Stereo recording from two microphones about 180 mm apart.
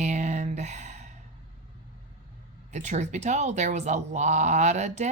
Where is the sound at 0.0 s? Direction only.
40° right (ahead or behind).